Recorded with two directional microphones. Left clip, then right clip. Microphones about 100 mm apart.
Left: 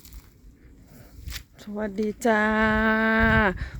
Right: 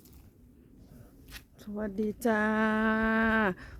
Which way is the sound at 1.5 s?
25° left (ahead or behind).